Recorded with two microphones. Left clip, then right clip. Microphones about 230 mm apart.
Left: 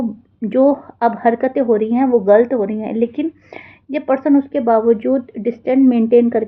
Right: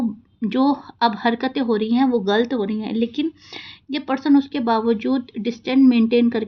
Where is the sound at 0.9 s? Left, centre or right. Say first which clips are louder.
Left 4 dB; right.